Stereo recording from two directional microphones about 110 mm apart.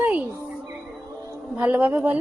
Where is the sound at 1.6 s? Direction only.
15° right (ahead or behind).